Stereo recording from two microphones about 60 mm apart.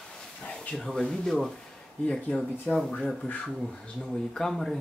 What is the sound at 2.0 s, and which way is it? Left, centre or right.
Speech, centre.